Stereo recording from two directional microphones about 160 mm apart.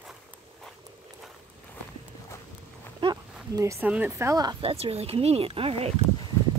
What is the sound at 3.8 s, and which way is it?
Speech, 10° right (ahead or behind).